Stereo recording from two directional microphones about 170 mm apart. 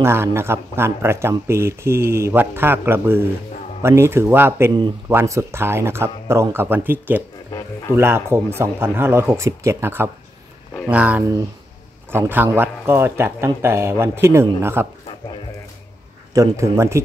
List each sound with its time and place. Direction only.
0.0 s speech: 15° right (ahead or behind)
16.3 s speech: 15° right (ahead or behind)